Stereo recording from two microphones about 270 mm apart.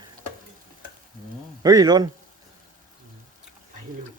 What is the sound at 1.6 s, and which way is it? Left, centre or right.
Speech, centre.